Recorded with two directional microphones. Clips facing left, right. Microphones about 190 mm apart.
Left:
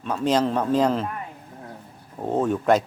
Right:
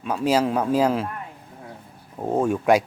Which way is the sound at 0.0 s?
10° right (ahead or behind).